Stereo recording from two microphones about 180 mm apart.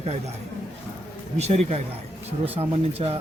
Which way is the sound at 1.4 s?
35° right (ahead or behind).